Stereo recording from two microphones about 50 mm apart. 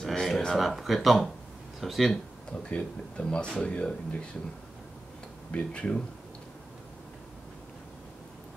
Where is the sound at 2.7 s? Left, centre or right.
Left.